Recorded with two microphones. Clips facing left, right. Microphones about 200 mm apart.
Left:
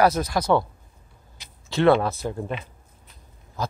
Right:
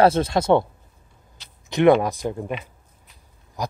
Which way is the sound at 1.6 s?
15° right (ahead or behind).